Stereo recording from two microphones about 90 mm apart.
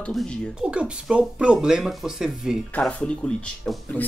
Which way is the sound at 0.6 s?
10° right (ahead or behind).